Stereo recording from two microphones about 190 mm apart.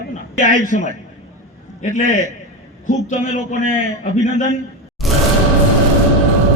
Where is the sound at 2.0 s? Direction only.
45° left (ahead or behind).